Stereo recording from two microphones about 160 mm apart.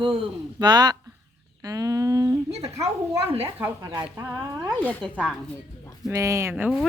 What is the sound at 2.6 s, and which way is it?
Speech, 20° right (ahead or behind).